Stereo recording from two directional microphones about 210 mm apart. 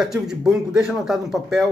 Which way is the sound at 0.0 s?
5° right (ahead or behind).